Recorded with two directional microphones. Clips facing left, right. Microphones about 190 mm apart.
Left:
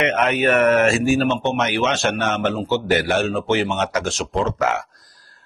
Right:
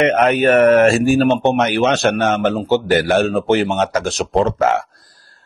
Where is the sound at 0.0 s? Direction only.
35° right (ahead or behind).